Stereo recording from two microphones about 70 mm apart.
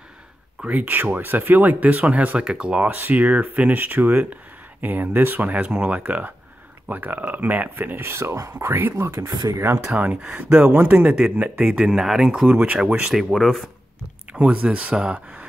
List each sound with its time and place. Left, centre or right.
0.7 s speech: right
8.0 s speech: right
9.3 s speech: right
9.9 s speech: right
11.3 s speech: right
11.7 s speech: centre
12.4 s speech: right
13.3 s speech: centre
14.3 s speech: centre